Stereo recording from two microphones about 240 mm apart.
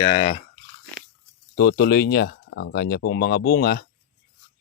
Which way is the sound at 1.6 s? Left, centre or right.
Left.